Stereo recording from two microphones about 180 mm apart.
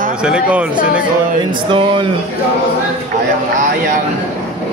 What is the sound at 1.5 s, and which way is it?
Speech, 30° right (ahead or behind).